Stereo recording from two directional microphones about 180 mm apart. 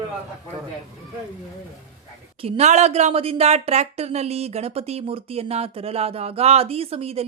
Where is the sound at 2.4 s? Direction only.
35° right (ahead or behind).